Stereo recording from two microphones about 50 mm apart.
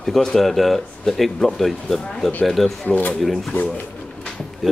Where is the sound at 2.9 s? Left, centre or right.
Left.